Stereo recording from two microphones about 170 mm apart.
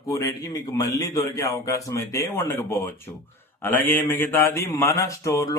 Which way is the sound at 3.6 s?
10° left (ahead or behind).